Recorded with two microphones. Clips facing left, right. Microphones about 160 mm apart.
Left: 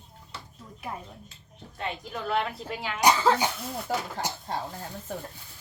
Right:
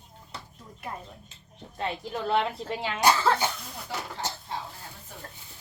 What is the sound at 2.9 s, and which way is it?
Speech, 15° left (ahead or behind).